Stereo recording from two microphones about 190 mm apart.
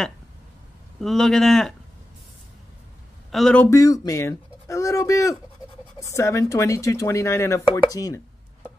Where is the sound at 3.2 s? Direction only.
Centre (ahead or behind); by 8.2 s 15° left (ahead or behind).